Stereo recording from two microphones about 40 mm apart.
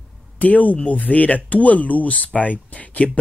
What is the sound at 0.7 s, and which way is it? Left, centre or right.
Speech, left.